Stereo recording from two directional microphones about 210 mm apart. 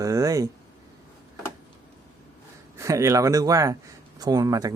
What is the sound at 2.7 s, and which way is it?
Speech, 15° right (ahead or behind).